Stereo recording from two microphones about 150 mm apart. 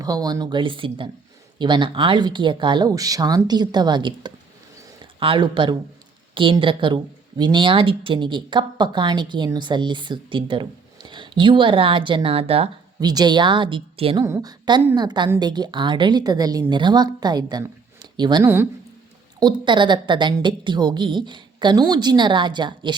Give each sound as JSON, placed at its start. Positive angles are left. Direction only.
{"t": 0.0, "sound": "a woman's voice", "side_deg": -25}
{"t": 13.0, "sound": "a woman's voice", "side_deg": -25}
{"t": 14.3, "sound": "a woman's voice", "side_deg": -15}
{"t": 14.9, "sound": "a woman's voice", "side_deg": -30}